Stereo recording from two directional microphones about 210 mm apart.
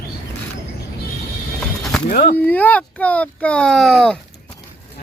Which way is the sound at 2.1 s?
40° left (ahead or behind).